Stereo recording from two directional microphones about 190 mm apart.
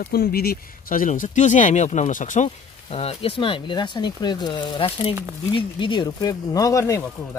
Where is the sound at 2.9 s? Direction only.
30° left (ahead or behind).